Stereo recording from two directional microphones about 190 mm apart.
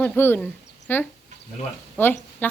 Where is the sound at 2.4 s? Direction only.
10° left (ahead or behind).